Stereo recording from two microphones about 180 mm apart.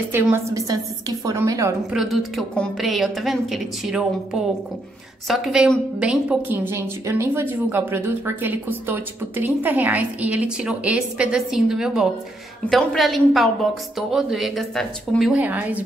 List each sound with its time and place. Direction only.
0.1 s a woman's voice: 15° right (ahead or behind)
1.9 s a woman's voice: centre (ahead or behind)